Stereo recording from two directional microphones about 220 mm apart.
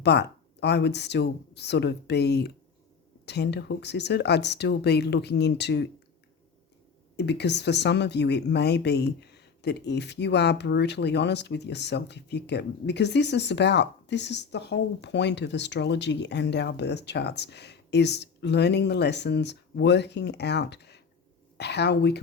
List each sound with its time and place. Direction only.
0.0 s speech: 50° left (ahead or behind)
7.2 s speech: 50° left (ahead or behind)